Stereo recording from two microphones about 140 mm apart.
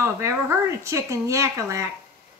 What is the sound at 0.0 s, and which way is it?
Speech, 20° right (ahead or behind).